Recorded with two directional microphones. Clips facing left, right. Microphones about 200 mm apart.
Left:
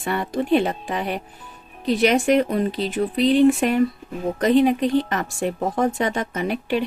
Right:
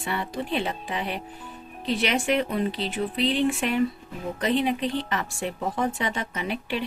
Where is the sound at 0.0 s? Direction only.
50° left (ahead or behind).